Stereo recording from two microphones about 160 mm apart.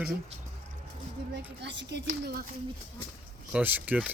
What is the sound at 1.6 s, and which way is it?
Speech, 90° right.